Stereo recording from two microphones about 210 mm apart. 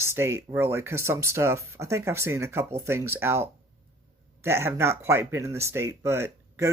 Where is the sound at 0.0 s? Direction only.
10° right (ahead or behind).